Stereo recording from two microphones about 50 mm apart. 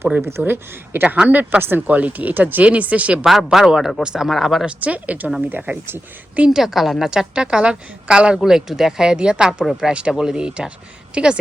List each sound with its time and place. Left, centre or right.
0.2 s speech: right
1.0 s a woman's voice: right
1.4 s speech: right
2.0 s speech: right
3.2 s speech: centre
4.3 s a woman's voice: centre
4.6 s a woman's voice: right
6.5 s a woman's voice: centre
7.3 s a woman's voice: centre
8.4 s speech: centre